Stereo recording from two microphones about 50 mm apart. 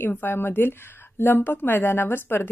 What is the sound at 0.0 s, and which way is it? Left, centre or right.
A woman's voice, left.